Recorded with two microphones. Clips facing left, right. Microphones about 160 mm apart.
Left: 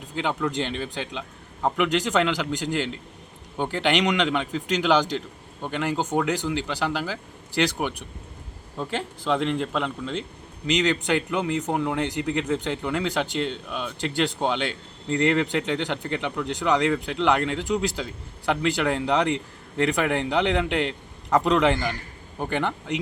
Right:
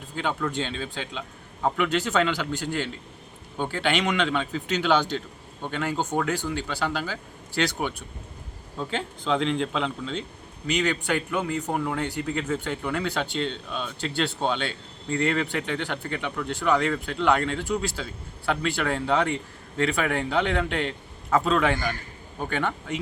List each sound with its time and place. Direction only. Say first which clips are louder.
0.2 s speech: left 2 dB; 15° left (ahead or behind)
10.7 s speech: left 3 dB; 20° left (ahead or behind)